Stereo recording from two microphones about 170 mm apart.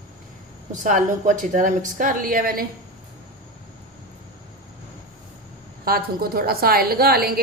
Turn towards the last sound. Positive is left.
turn(degrees=-65)  # may be behind; listen again after turning